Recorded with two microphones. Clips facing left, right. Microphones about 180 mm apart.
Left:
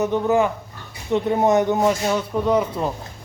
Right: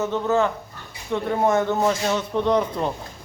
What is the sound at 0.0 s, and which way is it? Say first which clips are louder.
A man's voice: left 3 dB; 15° left (ahead or behind).